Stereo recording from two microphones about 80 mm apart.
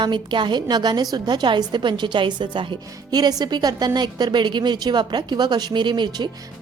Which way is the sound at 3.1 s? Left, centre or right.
Right.